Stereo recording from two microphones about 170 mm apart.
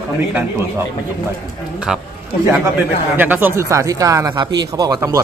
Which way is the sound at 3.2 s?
10° right (ahead or behind).